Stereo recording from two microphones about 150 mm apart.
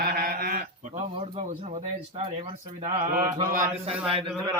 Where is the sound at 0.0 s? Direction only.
90° right.